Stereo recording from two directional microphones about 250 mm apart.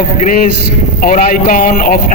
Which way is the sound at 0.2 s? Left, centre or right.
Left.